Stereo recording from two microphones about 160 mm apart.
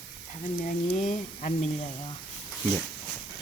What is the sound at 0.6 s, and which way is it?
Speech, 50° left (ahead or behind).